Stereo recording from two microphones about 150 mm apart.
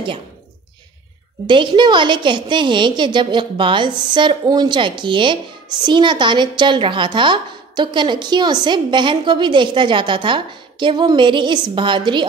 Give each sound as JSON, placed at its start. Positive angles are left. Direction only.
{"t": 1.5, "sound": "speech", "side_deg": -30}